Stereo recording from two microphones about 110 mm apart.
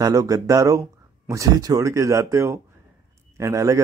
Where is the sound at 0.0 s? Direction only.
35° right (ahead or behind).